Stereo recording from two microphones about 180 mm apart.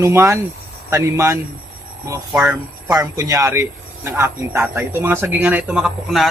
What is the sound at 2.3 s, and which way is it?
Speech, 5° right (ahead or behind).